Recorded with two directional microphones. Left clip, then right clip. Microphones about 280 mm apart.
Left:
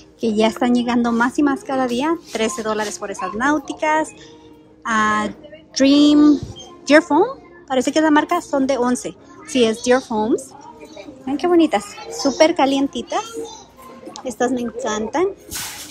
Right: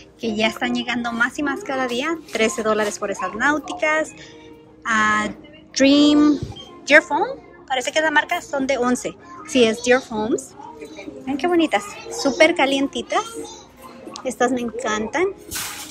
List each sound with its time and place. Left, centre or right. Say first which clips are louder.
0.2 s a woman's voice: left 4 dB; centre